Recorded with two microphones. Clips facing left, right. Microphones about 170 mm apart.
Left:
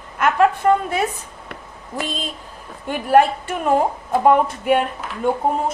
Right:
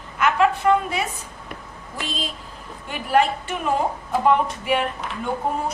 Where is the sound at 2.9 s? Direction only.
50° left (ahead or behind).